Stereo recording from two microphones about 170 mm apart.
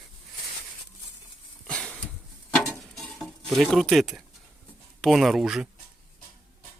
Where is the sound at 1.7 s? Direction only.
5° left (ahead or behind).